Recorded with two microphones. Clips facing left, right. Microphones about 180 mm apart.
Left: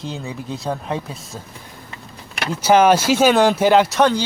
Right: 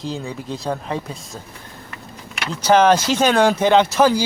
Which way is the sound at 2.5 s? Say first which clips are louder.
Left 1 dB; 10° left (ahead or behind).